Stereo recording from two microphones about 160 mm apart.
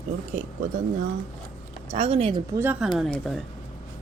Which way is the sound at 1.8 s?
40° right (ahead or behind).